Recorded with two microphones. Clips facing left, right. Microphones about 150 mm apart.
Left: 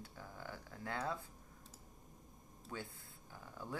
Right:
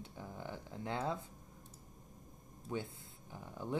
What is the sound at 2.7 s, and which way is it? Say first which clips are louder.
Speech: right 7 dB; 20° right (ahead or behind).